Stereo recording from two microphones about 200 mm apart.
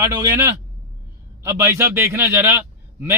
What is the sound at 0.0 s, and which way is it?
A man's voice, 15° right (ahead or behind).